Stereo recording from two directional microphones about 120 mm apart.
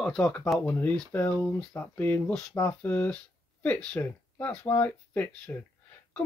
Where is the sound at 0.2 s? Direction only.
15° left (ahead or behind).